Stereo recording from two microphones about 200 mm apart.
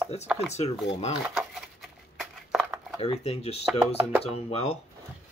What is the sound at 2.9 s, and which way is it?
Speech, 30° left (ahead or behind).